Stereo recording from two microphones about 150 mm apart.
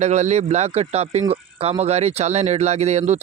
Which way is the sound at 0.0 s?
50° right (ahead or behind).